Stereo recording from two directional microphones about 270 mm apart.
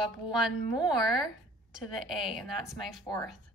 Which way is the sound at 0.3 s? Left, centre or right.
Centre.